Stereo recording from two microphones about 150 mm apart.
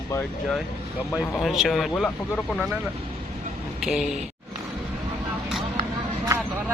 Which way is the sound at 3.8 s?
Centre (ahead or behind).